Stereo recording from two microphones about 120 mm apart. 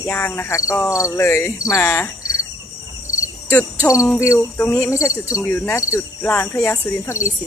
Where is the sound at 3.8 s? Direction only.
25° left (ahead or behind).